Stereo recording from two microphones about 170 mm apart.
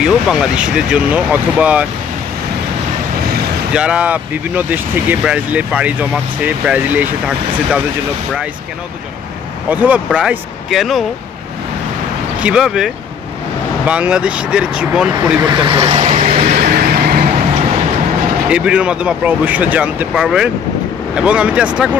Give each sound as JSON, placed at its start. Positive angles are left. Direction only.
{"t": 0.0, "sound": "speech", "side_deg": -5}
{"t": 3.7, "sound": "speech", "side_deg": -5}
{"t": 9.7, "sound": "speech", "side_deg": -10}
{"t": 12.4, "sound": "speech", "side_deg": -5}
{"t": 15.5, "sound": "vehicle", "side_deg": -30}
{"t": 18.5, "sound": "speech", "side_deg": -5}